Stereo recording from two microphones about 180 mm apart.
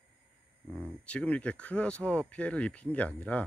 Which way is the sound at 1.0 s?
5° left (ahead or behind).